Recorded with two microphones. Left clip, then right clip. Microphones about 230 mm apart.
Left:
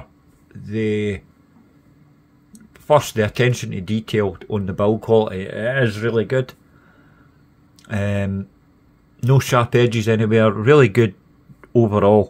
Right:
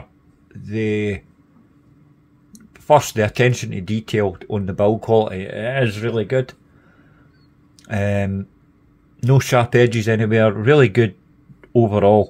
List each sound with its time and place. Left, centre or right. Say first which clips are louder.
0.5 s speech: even; centre
2.5 s speech: right 2 dB; centre
7.8 s speech: right 2 dB; centre